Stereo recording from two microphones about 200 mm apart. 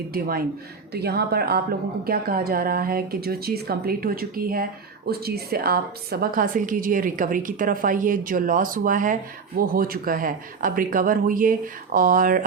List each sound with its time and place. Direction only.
0.1 s a woman's voice: 50° right (ahead or behind)